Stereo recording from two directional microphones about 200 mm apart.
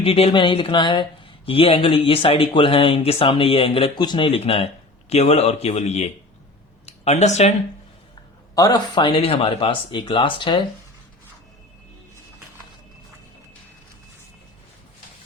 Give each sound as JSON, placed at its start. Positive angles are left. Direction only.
{"t": 0.0, "sound": "speech", "side_deg": 30}
{"t": 8.5, "sound": "speech", "side_deg": 20}